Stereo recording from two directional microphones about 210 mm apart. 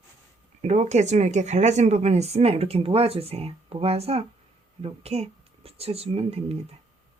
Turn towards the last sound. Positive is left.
turn(degrees=-30)  # may be behind; listen again after turning